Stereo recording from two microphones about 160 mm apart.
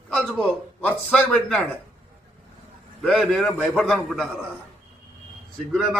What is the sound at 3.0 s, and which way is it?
Speech, 5° left (ahead or behind).